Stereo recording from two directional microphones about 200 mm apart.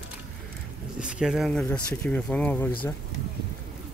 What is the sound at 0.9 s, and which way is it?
Speech, 5° right (ahead or behind).